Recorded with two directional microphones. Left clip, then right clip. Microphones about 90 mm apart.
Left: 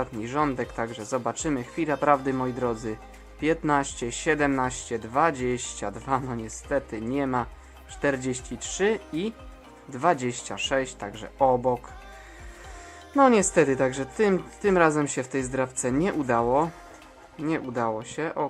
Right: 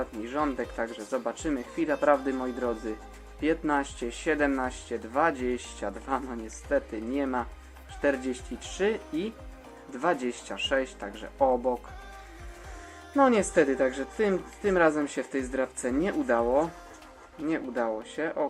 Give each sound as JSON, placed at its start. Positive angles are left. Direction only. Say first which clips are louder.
{"t": 0.0, "sound": "speech", "louder": "left 3 dB", "side_deg": 60}
{"t": 13.1, "sound": "speech", "louder": "left 3 dB", "side_deg": 50}